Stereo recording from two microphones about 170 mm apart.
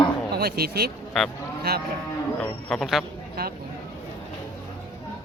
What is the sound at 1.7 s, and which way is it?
Speech, 70° right (ahead or behind).